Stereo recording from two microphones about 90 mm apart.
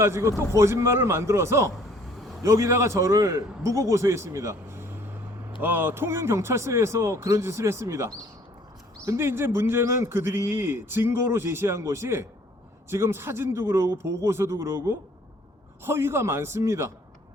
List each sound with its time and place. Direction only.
0.0 s a man's voice: 30° right (ahead or behind)